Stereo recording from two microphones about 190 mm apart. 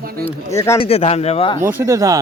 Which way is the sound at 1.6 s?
10° right (ahead or behind).